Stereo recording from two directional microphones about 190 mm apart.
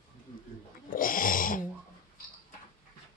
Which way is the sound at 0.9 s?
45° left (ahead or behind).